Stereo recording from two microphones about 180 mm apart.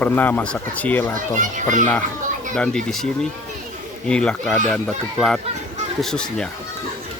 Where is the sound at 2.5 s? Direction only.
5° left (ahead or behind).